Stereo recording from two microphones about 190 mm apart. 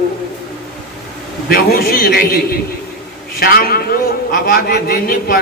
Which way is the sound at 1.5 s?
50° left (ahead or behind).